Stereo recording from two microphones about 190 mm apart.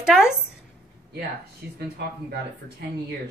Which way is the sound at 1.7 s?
55° right (ahead or behind).